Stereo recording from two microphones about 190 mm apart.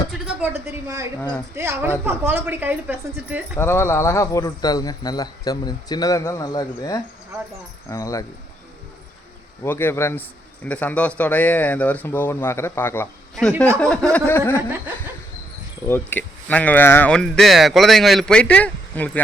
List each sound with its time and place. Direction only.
0.5 s a woman's voice: 15° right (ahead or behind)
3.6 s a man's voice: 15° left (ahead or behind)
9.6 s a man's voice: 10° left (ahead or behind)
15.9 s speech: 10° left (ahead or behind)